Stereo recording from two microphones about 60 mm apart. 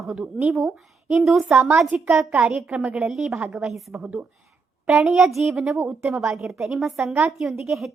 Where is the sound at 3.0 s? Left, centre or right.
Centre.